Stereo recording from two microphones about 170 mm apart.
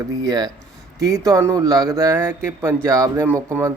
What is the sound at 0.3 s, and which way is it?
Speech, 25° right (ahead or behind).